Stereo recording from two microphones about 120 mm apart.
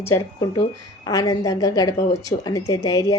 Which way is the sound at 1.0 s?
30° left (ahead or behind).